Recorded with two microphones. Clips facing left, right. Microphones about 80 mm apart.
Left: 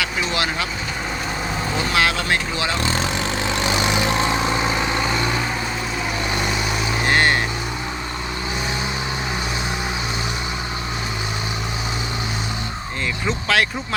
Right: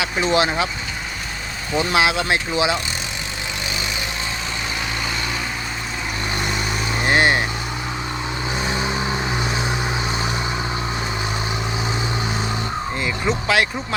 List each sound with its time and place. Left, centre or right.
0.0 s speech: right
1.9 s speech: centre
3.7 s vehicle: left
7.0 s vehicle: centre
13.2 s speech: centre